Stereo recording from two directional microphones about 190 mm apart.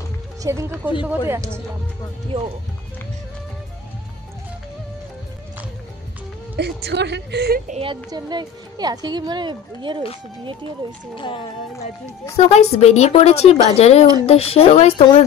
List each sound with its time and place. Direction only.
0.4 s speech: 15° right (ahead or behind)
6.5 s a woman's voice: 60° right (ahead or behind)
7.7 s a woman's voice: 25° right (ahead or behind)
11.1 s speech: 25° left (ahead or behind)